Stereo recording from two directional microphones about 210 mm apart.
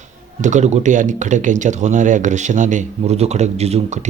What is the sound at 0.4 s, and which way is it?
Speech, 35° right (ahead or behind).